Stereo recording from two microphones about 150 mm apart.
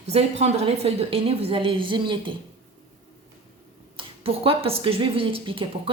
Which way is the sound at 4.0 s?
40° right (ahead or behind).